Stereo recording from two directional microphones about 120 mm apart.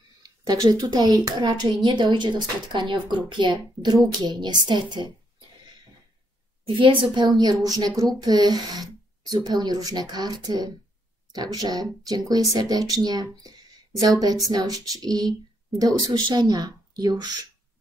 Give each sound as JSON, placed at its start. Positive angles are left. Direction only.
{"t": 0.2, "sound": "a child's voice", "side_deg": -35}
{"t": 6.8, "sound": "a child's voice", "side_deg": -45}